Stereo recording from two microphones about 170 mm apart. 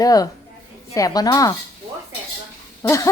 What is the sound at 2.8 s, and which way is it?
Speech, 20° left (ahead or behind).